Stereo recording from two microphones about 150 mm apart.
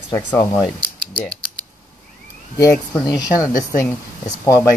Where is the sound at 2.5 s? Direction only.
20° left (ahead or behind).